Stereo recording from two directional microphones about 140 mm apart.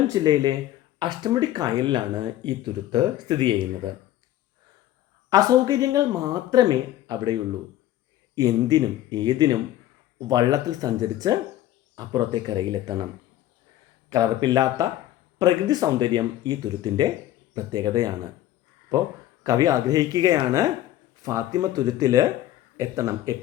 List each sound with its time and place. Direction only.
0.1 s speech: 30° right (ahead or behind)
5.3 s speech: 25° right (ahead or behind)
8.4 s speech: 30° right (ahead or behind)
14.1 s speech: 30° right (ahead or behind)